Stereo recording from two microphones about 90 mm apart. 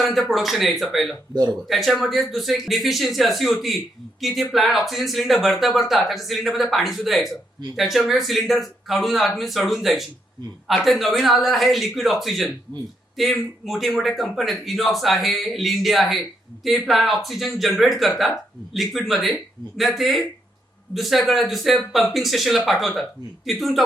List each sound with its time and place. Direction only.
0.0 s speech: centre (ahead or behind)